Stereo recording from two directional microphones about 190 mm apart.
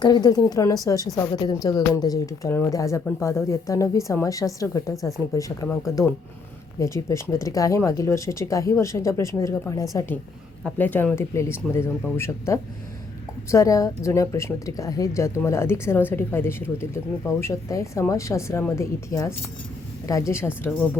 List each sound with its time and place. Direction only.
0.0 s a woman's voice: 20° left (ahead or behind)
4.9 s speech: centre (ahead or behind)
5.3 s speech: 15° left (ahead or behind)
6.7 s speech: 15° left (ahead or behind)